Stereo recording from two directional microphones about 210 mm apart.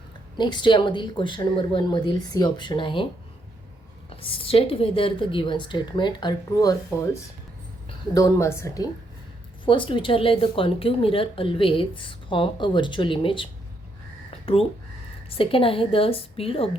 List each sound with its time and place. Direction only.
0.3 s a woman's voice: 20° left (ahead or behind)
4.2 s a woman's voice: 25° left (ahead or behind)